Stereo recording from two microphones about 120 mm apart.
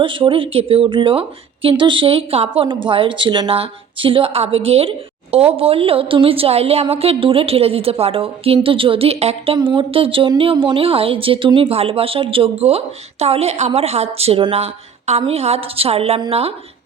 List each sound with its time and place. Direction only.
0.0 s a woman's voice: 45° right (ahead or behind)
9.6 s a woman's voice: 45° right (ahead or behind)